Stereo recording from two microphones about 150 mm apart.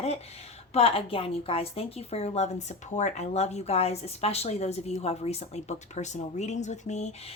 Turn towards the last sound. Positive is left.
turn(degrees=50)  # may be behind; listen again after turning